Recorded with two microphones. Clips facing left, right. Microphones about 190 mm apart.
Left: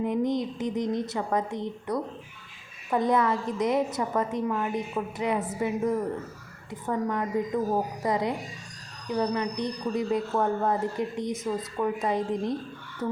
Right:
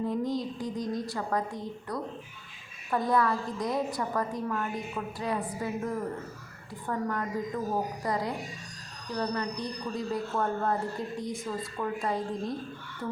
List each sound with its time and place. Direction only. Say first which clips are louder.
0.0 s speech: left 4 dB; 20° left (ahead or behind)